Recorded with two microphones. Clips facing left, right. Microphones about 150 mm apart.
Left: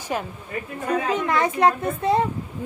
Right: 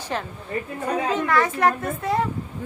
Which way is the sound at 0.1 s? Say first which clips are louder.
Even; 10° left (ahead or behind).